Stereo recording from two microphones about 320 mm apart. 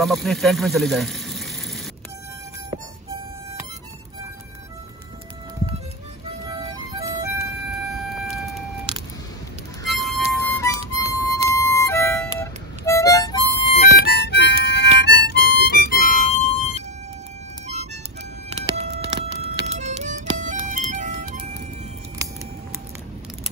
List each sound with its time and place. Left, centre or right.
0.0 s speech: centre
6.5 s music: centre
8.3 s vehicle: centre
10.0 s music: centre; by 16.8 s left
18.5 s music: centre